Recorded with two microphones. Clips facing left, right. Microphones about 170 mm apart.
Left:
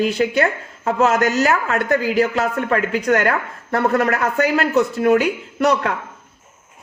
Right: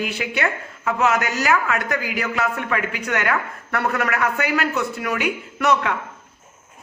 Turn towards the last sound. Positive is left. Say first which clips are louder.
# left 2 dB
turn(degrees=35)  # may be behind; listen again after turning